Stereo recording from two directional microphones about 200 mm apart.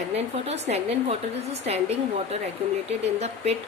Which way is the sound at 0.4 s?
35° right (ahead or behind).